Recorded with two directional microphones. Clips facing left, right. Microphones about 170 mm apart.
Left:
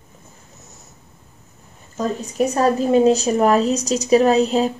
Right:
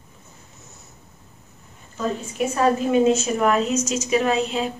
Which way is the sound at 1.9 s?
40° left (ahead or behind).